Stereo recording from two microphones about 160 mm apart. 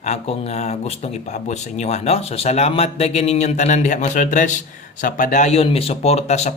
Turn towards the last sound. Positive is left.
turn(degrees=45)  # may be behind; listen again after turning